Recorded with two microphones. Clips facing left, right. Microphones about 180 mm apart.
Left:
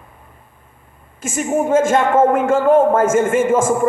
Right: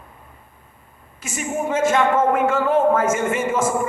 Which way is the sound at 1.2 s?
50° left (ahead or behind).